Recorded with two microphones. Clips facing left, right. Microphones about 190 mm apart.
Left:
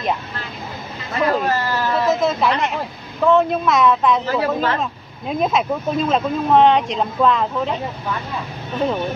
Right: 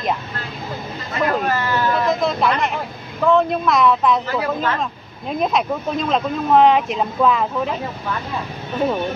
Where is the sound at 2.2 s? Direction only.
5° left (ahead or behind).